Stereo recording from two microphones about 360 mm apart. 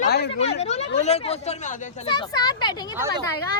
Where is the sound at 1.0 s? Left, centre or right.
Centre.